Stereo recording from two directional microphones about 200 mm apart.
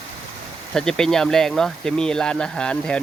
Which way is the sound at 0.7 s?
5° left (ahead or behind).